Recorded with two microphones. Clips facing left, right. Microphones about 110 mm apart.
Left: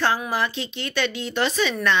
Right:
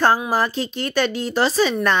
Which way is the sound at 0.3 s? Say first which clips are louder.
Right 4 dB; 40° right (ahead or behind).